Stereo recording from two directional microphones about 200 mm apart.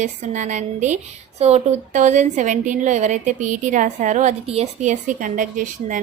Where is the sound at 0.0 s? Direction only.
35° right (ahead or behind).